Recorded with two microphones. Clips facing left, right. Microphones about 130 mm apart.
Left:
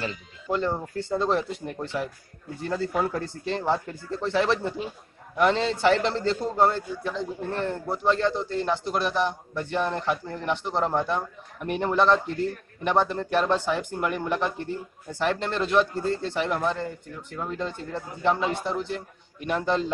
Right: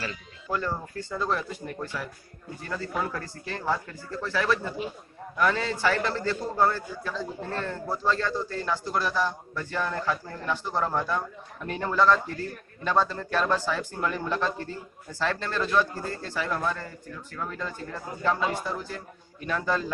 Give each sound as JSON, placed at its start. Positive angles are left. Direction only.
{"t": 0.0, "sound": "a man's voice", "side_deg": 25}